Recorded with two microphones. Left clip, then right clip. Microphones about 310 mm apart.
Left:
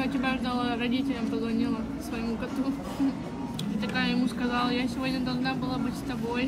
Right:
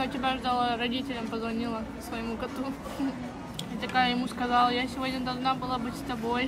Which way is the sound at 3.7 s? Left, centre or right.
Right.